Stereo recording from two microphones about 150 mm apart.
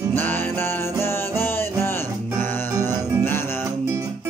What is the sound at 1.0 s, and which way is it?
Music, 15° left (ahead or behind).